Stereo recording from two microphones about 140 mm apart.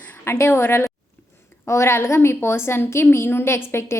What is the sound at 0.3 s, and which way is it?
A woman's voice, 20° left (ahead or behind).